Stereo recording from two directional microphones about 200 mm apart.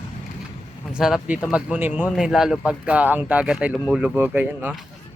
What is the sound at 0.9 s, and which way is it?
A man's voice, 5° right (ahead or behind).